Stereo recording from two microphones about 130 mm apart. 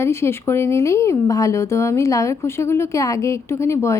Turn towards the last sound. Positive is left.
turn(degrees=20)  # may be behind; listen again after turning